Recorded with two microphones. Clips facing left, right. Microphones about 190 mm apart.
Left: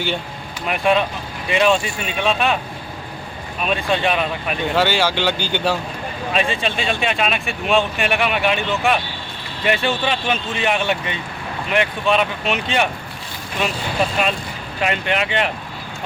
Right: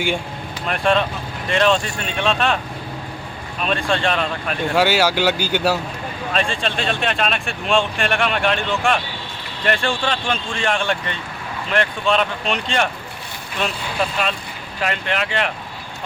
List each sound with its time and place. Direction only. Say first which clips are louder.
0.7 s speech: left 1 dB; 5° left (ahead or behind)
3.6 s speech: left 1 dB; 5° left (ahead or behind)
4.7 s speech: right 2 dB; 10° right (ahead or behind)
6.3 s speech: left 1 dB; 5° left (ahead or behind)
14.8 s speech: left 2 dB; 5° left (ahead or behind)